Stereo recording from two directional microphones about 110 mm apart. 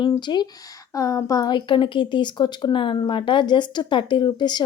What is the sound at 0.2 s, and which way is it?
Speech, 45° left (ahead or behind).